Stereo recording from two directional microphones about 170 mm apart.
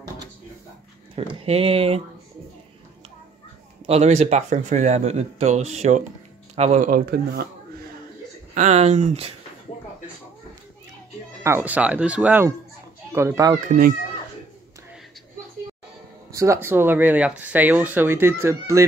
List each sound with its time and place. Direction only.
1.4 s speech: 35° right (ahead or behind)
3.8 s speech: 40° right (ahead or behind); by 7.4 s 60° right (ahead or behind)
8.5 s speech: 40° right (ahead or behind)
11.4 s speech: 10° right (ahead or behind)
13.7 s speech: 60° right (ahead or behind)
16.3 s speech: 15° right (ahead or behind)